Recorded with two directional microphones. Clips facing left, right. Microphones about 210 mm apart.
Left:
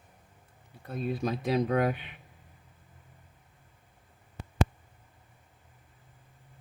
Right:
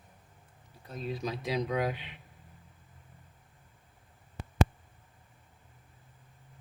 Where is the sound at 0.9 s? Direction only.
55° left (ahead or behind).